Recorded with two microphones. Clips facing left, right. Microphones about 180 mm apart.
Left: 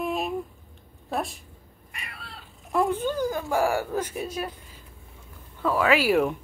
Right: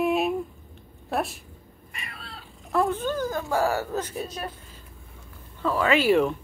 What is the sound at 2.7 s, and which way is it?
Speech, 10° left (ahead or behind).